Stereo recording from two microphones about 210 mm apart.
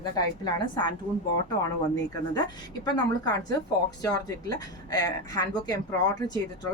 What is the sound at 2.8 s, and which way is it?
Speech, 20° left (ahead or behind).